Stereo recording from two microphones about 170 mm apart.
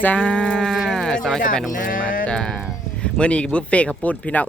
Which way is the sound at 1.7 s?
55° left (ahead or behind).